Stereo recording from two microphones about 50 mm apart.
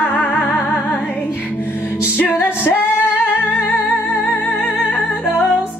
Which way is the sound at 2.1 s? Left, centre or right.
Left.